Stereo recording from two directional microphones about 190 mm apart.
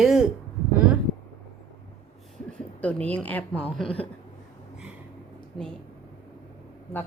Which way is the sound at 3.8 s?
30° left (ahead or behind).